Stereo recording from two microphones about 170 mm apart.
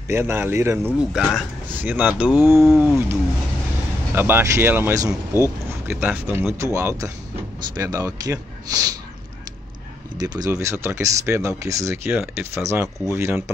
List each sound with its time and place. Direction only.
0.1 s speech: 15° right (ahead or behind)
2.4 s speech: 20° left (ahead or behind)
4.1 s speech: 15° right (ahead or behind)
10.1 s speech: 20° right (ahead or behind)